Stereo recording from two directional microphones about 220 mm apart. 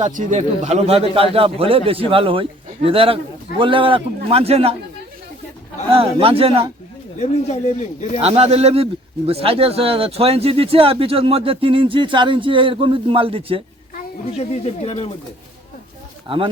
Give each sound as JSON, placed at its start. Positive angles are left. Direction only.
{"t": 0.0, "sound": "speech", "side_deg": -35}
{"t": 5.9, "sound": "speech", "side_deg": -25}
{"t": 7.2, "sound": "speech", "side_deg": 30}
{"t": 8.2, "sound": "speech", "side_deg": -30}
{"t": 14.3, "sound": "speech", "side_deg": 30}